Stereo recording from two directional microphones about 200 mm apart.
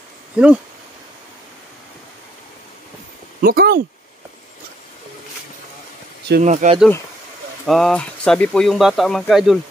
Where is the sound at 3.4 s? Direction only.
50° right (ahead or behind).